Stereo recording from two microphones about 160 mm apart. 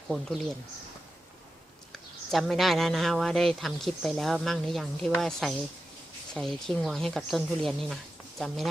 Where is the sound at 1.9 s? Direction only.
Centre (ahead or behind).